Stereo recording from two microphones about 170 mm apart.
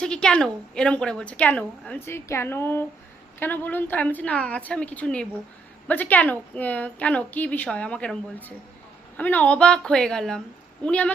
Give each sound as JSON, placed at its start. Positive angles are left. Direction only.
{"t": 0.0, "sound": "a woman's voice", "side_deg": 5}